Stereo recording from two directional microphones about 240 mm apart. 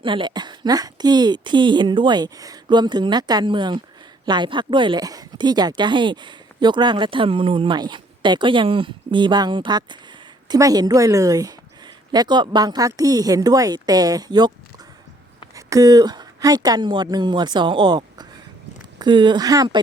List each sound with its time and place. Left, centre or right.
0.0 s speech: centre
15.5 s speech: centre